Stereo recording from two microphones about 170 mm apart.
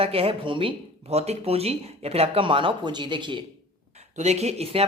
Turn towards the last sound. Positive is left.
turn(degrees=-35)  # may be behind; listen again after turning